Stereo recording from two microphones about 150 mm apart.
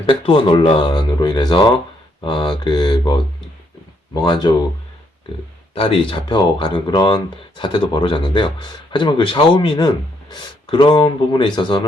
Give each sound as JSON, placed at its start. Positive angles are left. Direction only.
{"t": 0.0, "sound": "speech", "side_deg": 35}
{"t": 5.7, "sound": "speech", "side_deg": 35}